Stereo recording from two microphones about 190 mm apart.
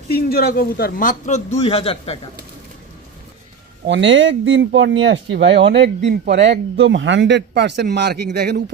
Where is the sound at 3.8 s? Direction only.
75° right (ahead or behind).